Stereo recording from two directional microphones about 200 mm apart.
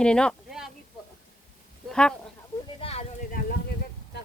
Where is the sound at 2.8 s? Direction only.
30° left (ahead or behind).